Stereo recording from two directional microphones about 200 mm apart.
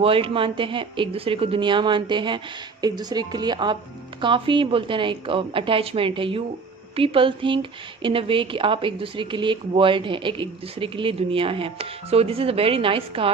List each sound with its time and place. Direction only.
0.0 s speech: 30° right (ahead or behind)